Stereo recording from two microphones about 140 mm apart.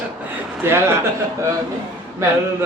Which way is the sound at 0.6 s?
15° right (ahead or behind).